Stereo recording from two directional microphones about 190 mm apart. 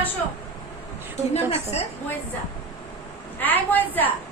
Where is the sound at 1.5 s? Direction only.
30° left (ahead or behind).